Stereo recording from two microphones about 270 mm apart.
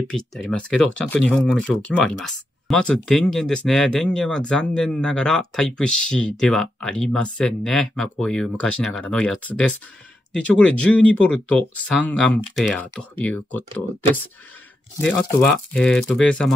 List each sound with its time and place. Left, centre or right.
0.1 s speech: centre
15.0 s speech: centre